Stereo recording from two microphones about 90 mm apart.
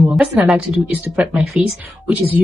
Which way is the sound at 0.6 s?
15° right (ahead or behind).